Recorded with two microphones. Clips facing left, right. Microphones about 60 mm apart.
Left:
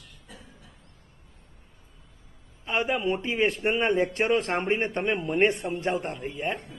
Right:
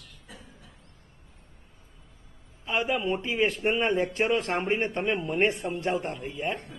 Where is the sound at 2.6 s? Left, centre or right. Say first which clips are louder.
Left 1 dB; centre.